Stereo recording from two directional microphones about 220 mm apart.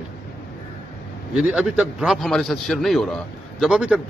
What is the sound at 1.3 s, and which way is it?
A man's voice, 5° right (ahead or behind).